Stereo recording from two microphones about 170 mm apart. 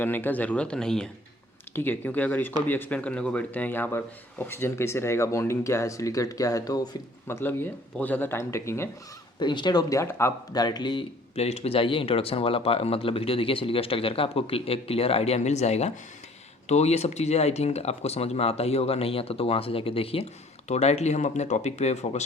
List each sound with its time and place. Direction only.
0.0 s a man's voice: 10° left (ahead or behind)
9.4 s speech: 25° left (ahead or behind)